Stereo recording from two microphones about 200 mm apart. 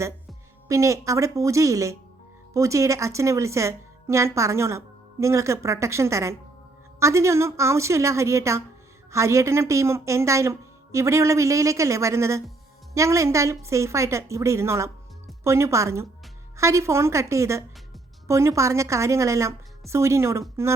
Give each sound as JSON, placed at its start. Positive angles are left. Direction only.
{"t": 0.7, "sound": "a woman's voice", "side_deg": -15}